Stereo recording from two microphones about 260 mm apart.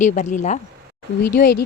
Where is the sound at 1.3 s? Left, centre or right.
Left.